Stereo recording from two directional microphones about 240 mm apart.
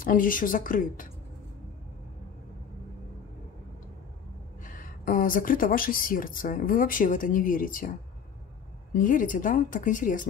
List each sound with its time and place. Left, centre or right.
0.0 s speech: left
4.6 s speech: left
8.9 s speech: left